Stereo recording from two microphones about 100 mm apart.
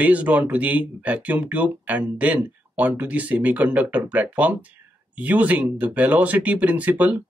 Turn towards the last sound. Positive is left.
turn(degrees=-15)  # may be behind; listen again after turning